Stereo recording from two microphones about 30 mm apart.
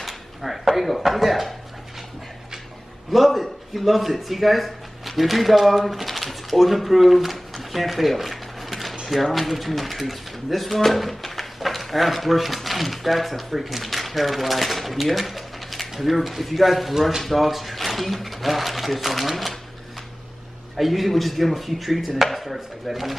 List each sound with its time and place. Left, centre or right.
0.0 s speech: centre
3.1 s speech: centre
20.7 s speech: centre